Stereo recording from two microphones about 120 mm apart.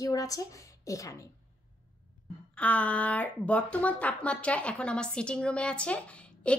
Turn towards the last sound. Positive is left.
turn(degrees=10)  # may be behind; listen again after turning